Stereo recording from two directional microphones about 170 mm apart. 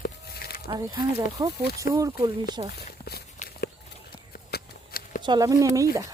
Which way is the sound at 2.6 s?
30° right (ahead or behind).